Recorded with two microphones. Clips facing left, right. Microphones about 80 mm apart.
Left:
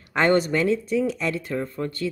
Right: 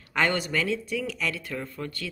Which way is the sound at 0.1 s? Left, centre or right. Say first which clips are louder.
Left 6 dB; left.